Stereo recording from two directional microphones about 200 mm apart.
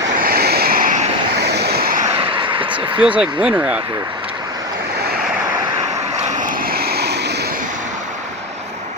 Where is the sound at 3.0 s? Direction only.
5° right (ahead or behind).